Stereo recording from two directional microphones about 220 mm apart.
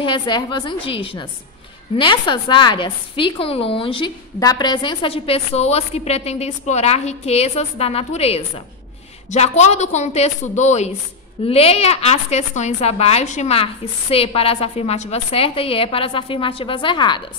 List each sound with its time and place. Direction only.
0.0 s a woman's voice: 20° left (ahead or behind)